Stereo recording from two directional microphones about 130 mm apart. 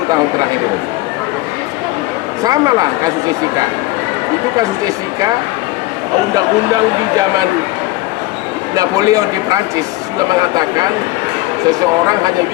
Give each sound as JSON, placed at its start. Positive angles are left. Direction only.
{"t": 2.4, "sound": "a man's voice", "side_deg": -30}
{"t": 8.7, "sound": "a man's voice", "side_deg": -30}